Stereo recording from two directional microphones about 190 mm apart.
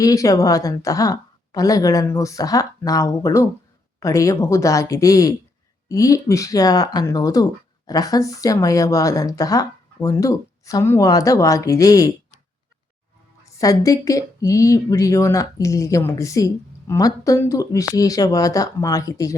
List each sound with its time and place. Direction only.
0.0 s a woman's voice: 20° left (ahead or behind)
13.4 s a woman's voice: 15° left (ahead or behind)